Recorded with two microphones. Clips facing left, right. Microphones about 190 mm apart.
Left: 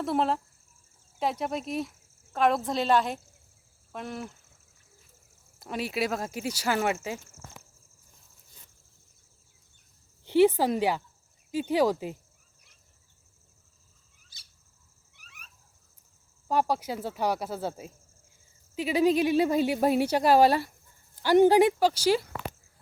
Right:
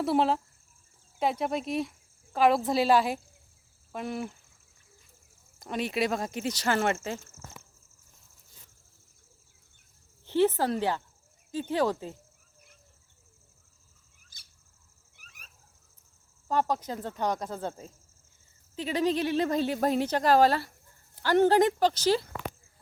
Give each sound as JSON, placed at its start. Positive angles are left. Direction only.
{"t": 0.0, "sound": "speech", "side_deg": 0}
{"t": 5.5, "sound": "speech", "side_deg": 5}
{"t": 10.2, "sound": "speech", "side_deg": 10}
{"t": 15.1, "sound": "dog", "side_deg": -45}
{"t": 16.5, "sound": "speech", "side_deg": 10}